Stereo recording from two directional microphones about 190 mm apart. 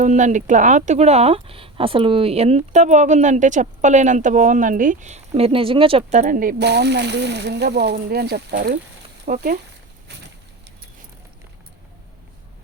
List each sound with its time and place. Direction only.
0.0 s speech: 40° right (ahead or behind)